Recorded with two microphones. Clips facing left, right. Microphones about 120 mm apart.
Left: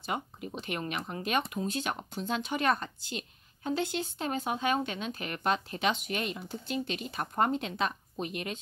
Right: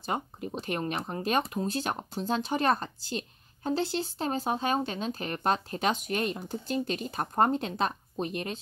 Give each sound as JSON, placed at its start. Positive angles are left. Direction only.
{"t": 0.0, "sound": "speech", "side_deg": -35}